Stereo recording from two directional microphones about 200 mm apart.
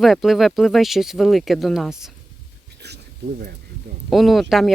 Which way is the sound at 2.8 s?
55° right (ahead or behind).